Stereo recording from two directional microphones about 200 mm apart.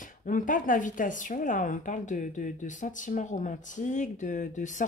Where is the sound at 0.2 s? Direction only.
40° left (ahead or behind).